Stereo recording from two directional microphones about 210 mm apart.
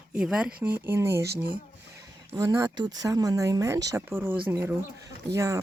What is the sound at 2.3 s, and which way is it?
Speech, 15° right (ahead or behind).